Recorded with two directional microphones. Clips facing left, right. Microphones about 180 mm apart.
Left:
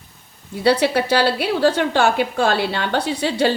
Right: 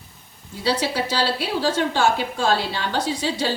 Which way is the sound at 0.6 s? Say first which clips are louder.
Left 6 dB; 60° left (ahead or behind).